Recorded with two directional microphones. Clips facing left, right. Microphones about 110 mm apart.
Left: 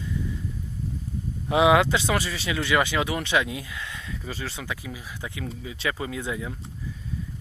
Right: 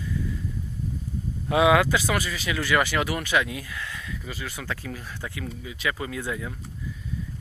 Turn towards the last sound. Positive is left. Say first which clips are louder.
# even
turn(degrees=20)  # may be behind; listen again after turning